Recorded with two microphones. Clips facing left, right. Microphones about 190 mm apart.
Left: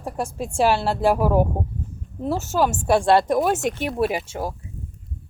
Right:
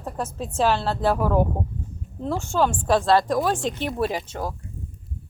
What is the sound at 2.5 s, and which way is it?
Speech, 10° left (ahead or behind).